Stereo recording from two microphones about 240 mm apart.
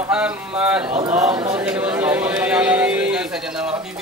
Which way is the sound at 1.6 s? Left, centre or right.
Centre.